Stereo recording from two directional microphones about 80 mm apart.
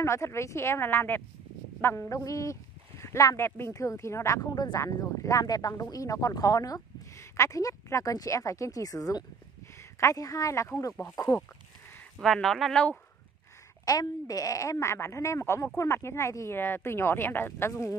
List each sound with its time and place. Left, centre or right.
0.0 s a woman's voice: left
7.2 s a woman's voice: left
12.2 s speech: centre
13.8 s speech: left